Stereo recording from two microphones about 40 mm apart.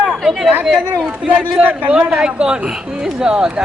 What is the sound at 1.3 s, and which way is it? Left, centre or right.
Speech, right.